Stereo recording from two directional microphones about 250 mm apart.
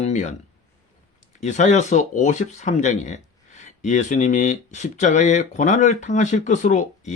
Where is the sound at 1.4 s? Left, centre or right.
Left.